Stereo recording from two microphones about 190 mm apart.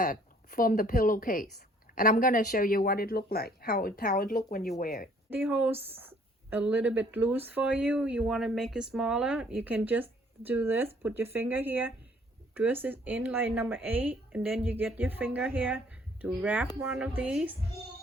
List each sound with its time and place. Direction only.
0.0 s speech: 45° left (ahead or behind)
5.3 s speech: 10° right (ahead or behind)